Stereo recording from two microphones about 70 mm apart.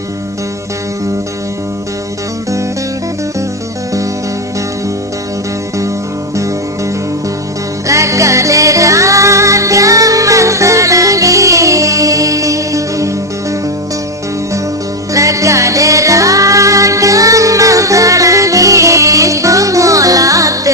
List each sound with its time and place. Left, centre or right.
7.9 s music: right
15.1 s music: right